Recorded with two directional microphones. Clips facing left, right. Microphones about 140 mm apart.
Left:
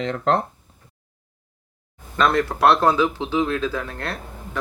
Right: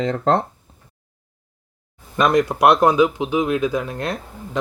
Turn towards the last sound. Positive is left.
turn(degrees=-20)  # may be behind; listen again after turning